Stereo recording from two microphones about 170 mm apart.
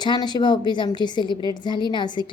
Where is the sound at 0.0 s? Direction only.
25° left (ahead or behind).